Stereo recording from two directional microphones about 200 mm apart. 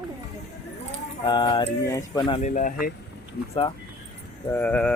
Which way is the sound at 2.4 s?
40° left (ahead or behind).